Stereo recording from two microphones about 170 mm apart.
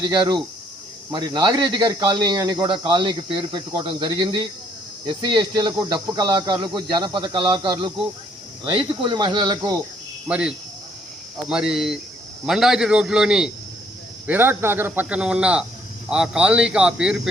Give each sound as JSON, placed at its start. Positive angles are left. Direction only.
{"t": 0.0, "sound": "speech", "side_deg": -25}
{"t": 10.2, "sound": "a man's voice", "side_deg": -5}